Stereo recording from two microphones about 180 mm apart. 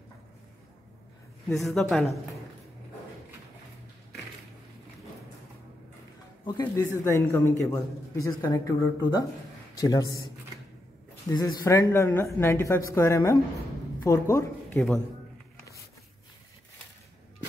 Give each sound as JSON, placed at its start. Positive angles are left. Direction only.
{"t": 1.5, "sound": "speech", "side_deg": 0}
{"t": 6.4, "sound": "a man's voice", "side_deg": 15}
{"t": 11.2, "sound": "speech", "side_deg": 20}